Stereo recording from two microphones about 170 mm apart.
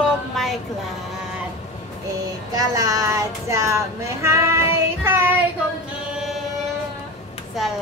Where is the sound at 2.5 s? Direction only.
20° right (ahead or behind).